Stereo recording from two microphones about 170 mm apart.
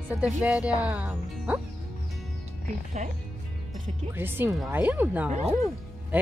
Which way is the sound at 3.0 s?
45° right (ahead or behind).